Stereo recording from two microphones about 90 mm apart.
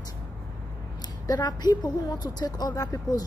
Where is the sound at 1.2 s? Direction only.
45° left (ahead or behind).